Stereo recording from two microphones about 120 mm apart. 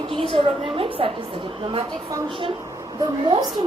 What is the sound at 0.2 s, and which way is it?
Speech, 50° right (ahead or behind).